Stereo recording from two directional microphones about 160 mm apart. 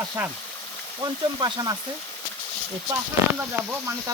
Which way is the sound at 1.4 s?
25° right (ahead or behind).